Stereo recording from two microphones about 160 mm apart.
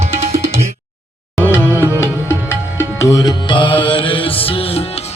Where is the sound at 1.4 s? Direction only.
15° left (ahead or behind).